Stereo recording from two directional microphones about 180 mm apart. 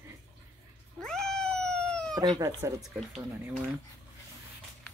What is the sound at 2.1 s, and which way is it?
Speech, 20° right (ahead or behind).